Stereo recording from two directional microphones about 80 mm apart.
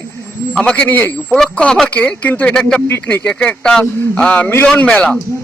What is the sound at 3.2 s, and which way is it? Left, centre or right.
Speech, centre.